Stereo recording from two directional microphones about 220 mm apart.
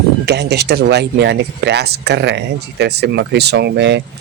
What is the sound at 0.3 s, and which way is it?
Speech, 50° right (ahead or behind).